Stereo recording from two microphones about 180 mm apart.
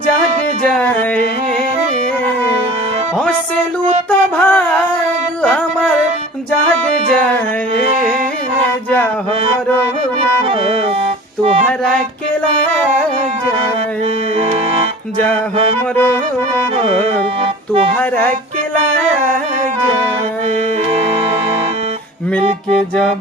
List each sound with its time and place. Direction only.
0.7 s a sound: 10° left (ahead or behind)
4.1 s music: 10° left (ahead or behind)
14.3 s organ: 35° right (ahead or behind)
16.7 s music: 35° right (ahead or behind)